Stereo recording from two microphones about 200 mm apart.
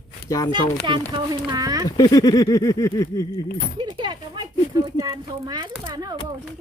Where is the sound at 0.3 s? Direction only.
15° left (ahead or behind).